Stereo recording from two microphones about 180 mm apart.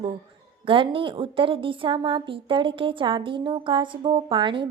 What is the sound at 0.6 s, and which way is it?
A woman's voice, 30° right (ahead or behind).